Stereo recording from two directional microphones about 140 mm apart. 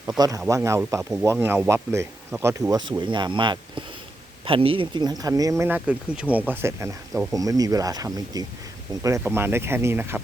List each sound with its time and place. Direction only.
0.2 s speech: 25° right (ahead or behind)
3.0 s speech: 35° right (ahead or behind)
5.6 s speech: 10° right (ahead or behind)